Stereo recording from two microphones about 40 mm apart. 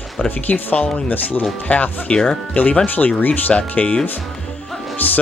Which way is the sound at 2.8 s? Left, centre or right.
Left.